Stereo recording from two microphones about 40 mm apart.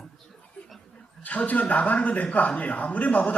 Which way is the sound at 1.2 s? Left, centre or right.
Left.